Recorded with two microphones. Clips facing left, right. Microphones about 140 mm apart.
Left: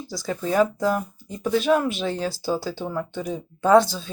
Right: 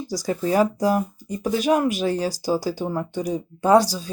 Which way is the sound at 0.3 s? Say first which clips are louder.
Right 1 dB; 10° right (ahead or behind).